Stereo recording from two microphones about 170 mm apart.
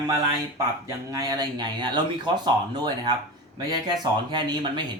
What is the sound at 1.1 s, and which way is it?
Speech, 20° right (ahead or behind).